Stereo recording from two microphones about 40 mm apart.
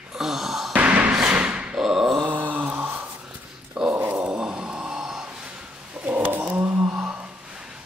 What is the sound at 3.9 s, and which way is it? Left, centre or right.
Dog, right.